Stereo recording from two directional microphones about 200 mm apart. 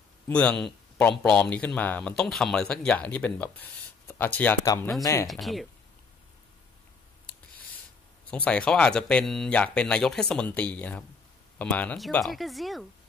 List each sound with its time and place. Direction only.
0.3 s speech: 5° left (ahead or behind)
5.3 s speech: centre (ahead or behind)
8.3 s speech: 5° left (ahead or behind)